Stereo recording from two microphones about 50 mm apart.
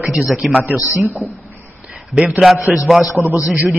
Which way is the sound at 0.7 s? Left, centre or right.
Left.